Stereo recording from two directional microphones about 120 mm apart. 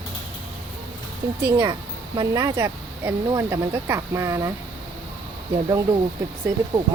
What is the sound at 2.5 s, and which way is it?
Speech, 25° right (ahead or behind).